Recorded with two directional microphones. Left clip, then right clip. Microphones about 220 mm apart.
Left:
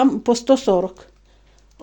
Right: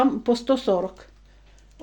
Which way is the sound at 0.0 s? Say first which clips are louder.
Left 4 dB; 40° left (ahead or behind).